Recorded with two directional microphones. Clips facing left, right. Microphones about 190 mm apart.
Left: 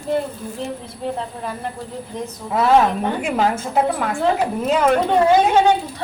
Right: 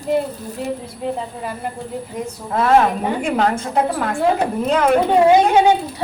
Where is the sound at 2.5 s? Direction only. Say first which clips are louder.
Even; 5° left (ahead or behind).